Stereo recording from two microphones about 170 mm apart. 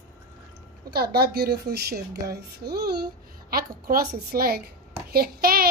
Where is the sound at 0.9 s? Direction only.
65° right (ahead or behind).